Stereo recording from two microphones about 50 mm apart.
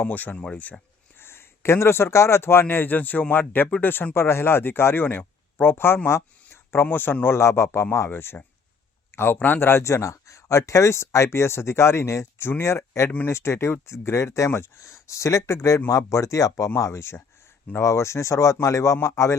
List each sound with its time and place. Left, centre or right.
0.0 s speech: left
1.2 s a man's voice: left
6.5 s a sound: left
6.9 s a man's voice: left
9.4 s speech: left
12.4 s speech: left
17.7 s speech: left